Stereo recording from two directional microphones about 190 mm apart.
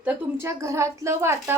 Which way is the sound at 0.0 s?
10° right (ahead or behind).